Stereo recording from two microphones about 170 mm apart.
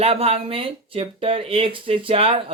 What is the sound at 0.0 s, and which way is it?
Speech, 35° right (ahead or behind).